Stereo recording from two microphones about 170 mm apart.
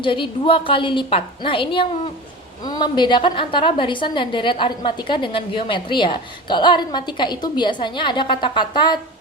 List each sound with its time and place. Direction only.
0.0 s a woman's voice: 30° left (ahead or behind)